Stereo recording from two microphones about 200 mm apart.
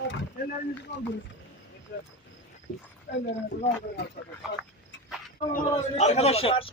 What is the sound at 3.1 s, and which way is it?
Speech, 60° left (ahead or behind).